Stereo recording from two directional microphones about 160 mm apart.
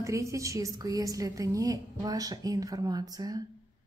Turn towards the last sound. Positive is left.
turn(degrees=-25)  # may be behind; listen again after turning